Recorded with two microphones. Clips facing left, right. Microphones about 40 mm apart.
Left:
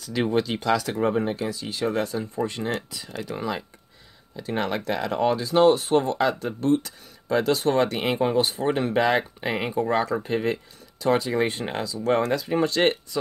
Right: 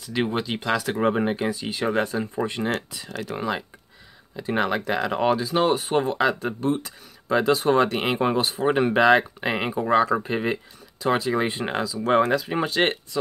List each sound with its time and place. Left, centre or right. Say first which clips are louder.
0.0 s speech: left 2 dB; right
8.4 s speech: left 1 dB; centre
8.6 s speech: right 8 dB; centre
11.8 s speech: right 3 dB; centre